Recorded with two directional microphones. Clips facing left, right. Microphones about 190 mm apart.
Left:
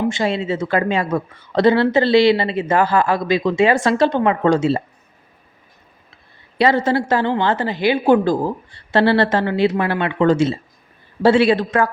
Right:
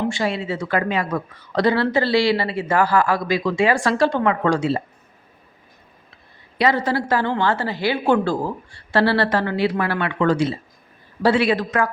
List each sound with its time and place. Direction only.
0.1 s speech: 25° left (ahead or behind)
6.6 s speech: 25° left (ahead or behind)